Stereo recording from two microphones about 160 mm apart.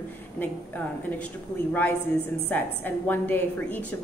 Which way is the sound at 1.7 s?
10° left (ahead or behind).